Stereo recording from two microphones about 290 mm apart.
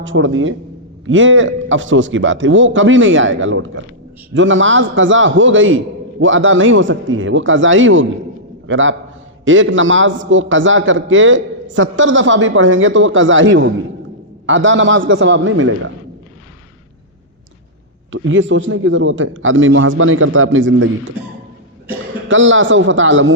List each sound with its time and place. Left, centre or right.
0.0 s a man's voice: right
18.1 s a man's voice: right
22.3 s a man's voice: right